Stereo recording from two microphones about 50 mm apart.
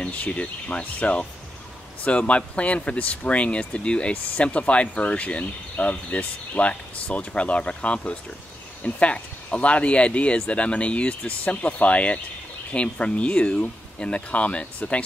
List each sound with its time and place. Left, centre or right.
0.0 s speech: left